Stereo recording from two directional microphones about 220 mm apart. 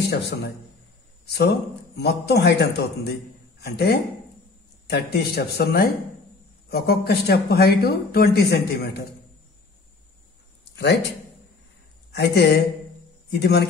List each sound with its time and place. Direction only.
0.1 s speech: 45° left (ahead or behind)
2.0 s speech: 50° left (ahead or behind)
10.8 s speech: 50° left (ahead or behind)
12.1 s speech: 50° left (ahead or behind)